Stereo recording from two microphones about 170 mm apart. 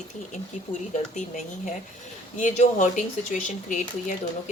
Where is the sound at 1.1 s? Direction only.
45° left (ahead or behind).